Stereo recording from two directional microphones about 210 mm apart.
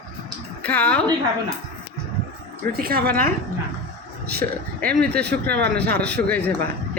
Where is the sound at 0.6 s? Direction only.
5° left (ahead or behind).